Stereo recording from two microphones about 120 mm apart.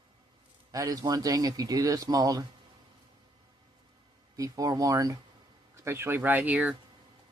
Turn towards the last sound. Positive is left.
turn(degrees=-10)  # may be behind; listen again after turning